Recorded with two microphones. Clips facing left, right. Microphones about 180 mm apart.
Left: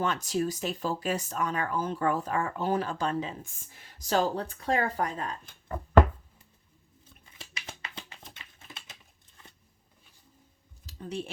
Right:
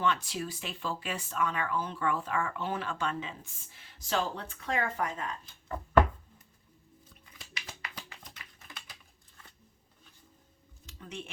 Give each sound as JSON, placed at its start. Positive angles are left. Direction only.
{"t": 0.0, "sound": "speech", "side_deg": 40}
{"t": 7.3, "sound": "typing", "side_deg": 25}
{"t": 10.8, "sound": "a sound", "side_deg": 35}